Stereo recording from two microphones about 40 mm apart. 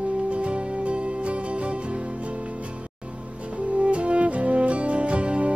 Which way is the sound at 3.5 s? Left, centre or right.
Right.